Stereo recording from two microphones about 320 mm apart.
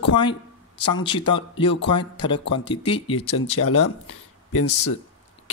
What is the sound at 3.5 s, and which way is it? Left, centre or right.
Speech, left.